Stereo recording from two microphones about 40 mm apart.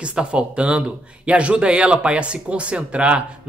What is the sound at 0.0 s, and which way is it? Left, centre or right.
A man's voice, right.